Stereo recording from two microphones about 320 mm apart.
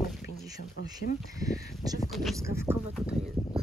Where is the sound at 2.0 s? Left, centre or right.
Centre.